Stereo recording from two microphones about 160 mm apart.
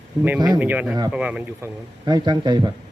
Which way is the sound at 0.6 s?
10° right (ahead or behind).